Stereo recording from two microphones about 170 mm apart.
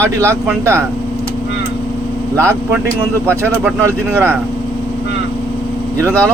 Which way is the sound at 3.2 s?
15° right (ahead or behind).